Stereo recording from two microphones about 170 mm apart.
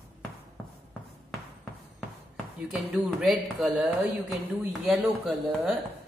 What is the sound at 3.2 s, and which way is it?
A man's voice, centre (ahead or behind).